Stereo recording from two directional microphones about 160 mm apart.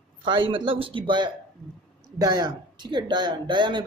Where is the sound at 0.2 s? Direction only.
30° right (ahead or behind).